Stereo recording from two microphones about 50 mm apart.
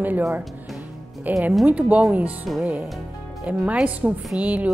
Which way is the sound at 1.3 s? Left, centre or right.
Right.